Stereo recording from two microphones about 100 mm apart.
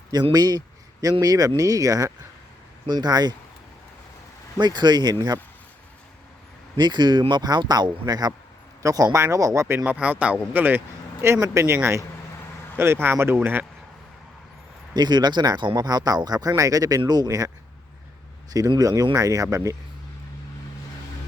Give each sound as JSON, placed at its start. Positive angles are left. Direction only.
{"t": 0.3, "sound": "speech", "side_deg": -40}
{"t": 4.5, "sound": "speech", "side_deg": -45}
{"t": 6.7, "sound": "speech", "side_deg": -45}
{"t": 14.9, "sound": "speech", "side_deg": -45}
{"t": 18.8, "sound": "speech", "side_deg": -40}